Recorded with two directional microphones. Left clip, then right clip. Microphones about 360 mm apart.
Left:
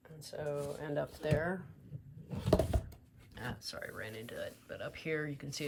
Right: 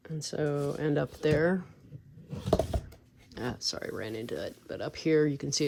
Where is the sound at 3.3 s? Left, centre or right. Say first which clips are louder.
Right 9 dB; centre.